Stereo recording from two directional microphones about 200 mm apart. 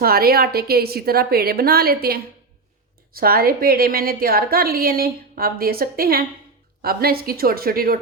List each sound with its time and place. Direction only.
0.0 s a woman's voice: 50° right (ahead or behind)